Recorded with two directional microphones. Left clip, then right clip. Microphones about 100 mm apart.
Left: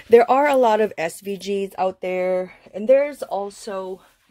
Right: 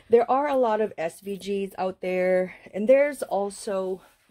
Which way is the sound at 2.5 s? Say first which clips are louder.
Left 3 dB; 45° right (ahead or behind).